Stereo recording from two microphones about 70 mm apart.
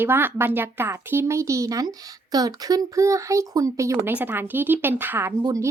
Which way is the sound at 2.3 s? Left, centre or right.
Right.